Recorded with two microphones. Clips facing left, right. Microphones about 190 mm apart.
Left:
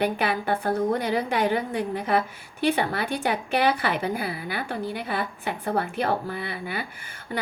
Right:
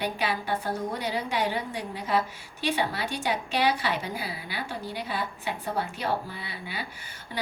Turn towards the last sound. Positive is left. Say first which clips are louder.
# left 6 dB
turn(degrees=55)  # may be behind; listen again after turning